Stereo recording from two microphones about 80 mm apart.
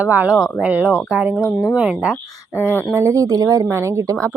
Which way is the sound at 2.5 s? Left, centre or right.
Left.